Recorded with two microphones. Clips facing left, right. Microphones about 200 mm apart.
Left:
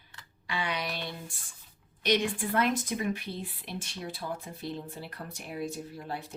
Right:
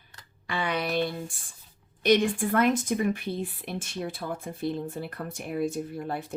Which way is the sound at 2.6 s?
50° right (ahead or behind).